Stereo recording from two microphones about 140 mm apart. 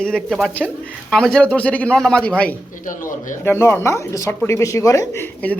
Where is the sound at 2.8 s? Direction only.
70° left (ahead or behind).